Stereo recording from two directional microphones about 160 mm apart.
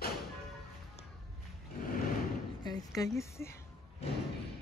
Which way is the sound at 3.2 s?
15° left (ahead or behind).